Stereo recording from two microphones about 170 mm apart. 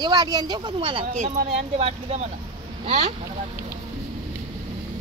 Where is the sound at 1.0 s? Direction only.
45° right (ahead or behind).